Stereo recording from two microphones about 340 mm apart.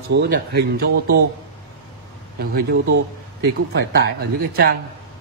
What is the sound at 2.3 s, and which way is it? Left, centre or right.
A man's voice, right.